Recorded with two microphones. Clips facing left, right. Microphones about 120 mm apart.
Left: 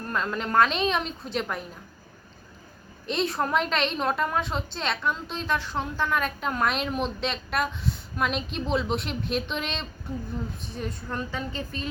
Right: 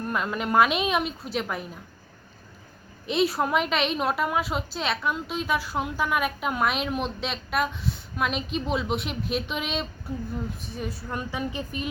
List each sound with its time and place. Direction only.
0.1 s a woman's voice: 10° right (ahead or behind)
3.1 s a woman's voice: 5° right (ahead or behind)